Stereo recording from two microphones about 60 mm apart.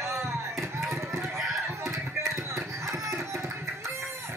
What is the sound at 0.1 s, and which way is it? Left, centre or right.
Chop, right.